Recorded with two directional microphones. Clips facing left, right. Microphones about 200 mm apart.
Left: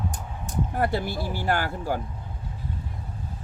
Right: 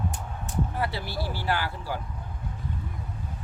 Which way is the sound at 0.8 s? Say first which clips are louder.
Left 5 dB; 50° left (ahead or behind).